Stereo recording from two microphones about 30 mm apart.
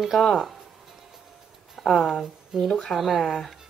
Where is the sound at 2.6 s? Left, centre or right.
Left.